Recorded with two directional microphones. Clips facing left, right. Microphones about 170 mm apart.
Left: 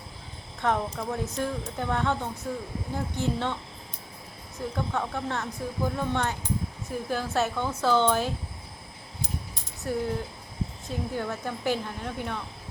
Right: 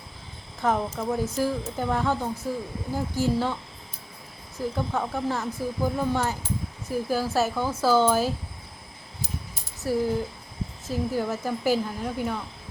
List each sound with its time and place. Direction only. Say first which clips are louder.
0.6 s speech: right 2 dB; centre (ahead or behind)
9.8 s speech: right 4 dB; 5° right (ahead or behind)